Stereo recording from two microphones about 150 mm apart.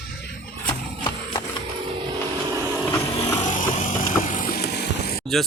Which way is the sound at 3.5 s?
60° left (ahead or behind).